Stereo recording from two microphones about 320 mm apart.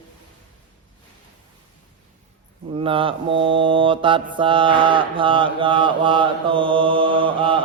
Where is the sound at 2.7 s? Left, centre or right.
Centre.